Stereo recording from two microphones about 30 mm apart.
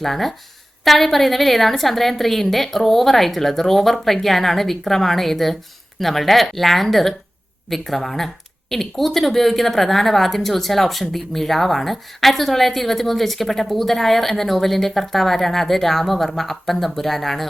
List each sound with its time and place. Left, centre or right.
0.0 s a woman's voice: centre